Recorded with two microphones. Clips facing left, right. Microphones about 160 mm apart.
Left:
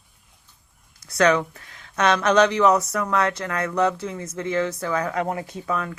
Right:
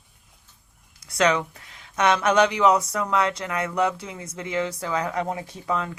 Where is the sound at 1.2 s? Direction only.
15° right (ahead or behind).